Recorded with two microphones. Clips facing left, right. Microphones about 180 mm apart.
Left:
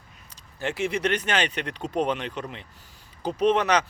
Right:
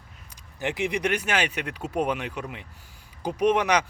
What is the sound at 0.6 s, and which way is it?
A man's voice, 15° right (ahead or behind).